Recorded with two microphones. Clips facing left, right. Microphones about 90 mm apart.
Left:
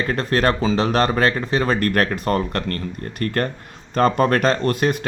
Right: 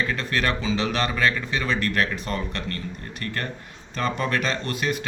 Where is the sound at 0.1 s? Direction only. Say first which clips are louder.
Left 6 dB; 40° left (ahead or behind).